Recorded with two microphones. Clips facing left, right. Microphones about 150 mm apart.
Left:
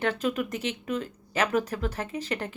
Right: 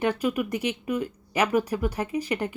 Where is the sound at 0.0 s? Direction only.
10° right (ahead or behind).